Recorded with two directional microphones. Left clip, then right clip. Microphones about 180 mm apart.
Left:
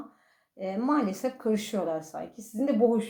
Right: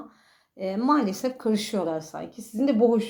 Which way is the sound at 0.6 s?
35° right (ahead or behind).